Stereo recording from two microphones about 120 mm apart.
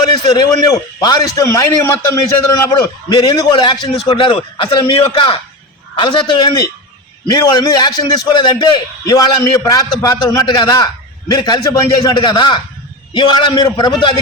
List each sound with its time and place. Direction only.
0.0 s a man's voice: 35° left (ahead or behind)